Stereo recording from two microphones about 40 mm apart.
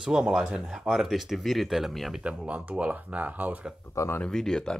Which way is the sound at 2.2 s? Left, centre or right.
Right.